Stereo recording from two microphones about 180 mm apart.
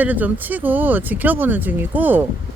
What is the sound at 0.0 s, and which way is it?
Speech, 10° right (ahead or behind).